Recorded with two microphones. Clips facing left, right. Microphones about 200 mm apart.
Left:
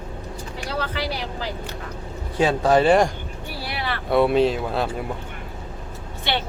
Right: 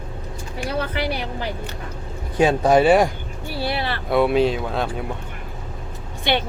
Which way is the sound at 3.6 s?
30° right (ahead or behind).